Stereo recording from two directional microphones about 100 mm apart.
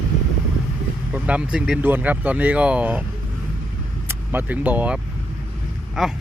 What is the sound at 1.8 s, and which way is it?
Speech, 20° right (ahead or behind).